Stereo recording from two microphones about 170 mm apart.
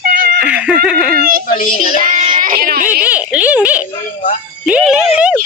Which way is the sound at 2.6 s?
55° right (ahead or behind).